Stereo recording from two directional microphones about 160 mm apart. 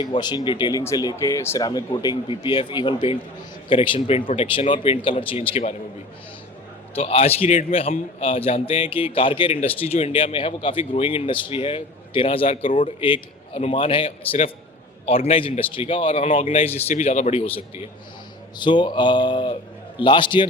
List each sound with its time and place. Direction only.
0.0 s a man's voice: 25° left (ahead or behind)
6.9 s a man's voice: 35° left (ahead or behind)
18.5 s speech: 30° left (ahead or behind)